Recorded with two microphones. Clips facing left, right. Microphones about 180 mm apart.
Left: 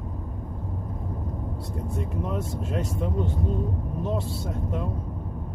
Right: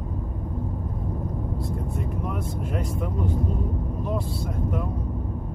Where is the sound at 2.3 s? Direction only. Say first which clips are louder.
Even; 25° left (ahead or behind).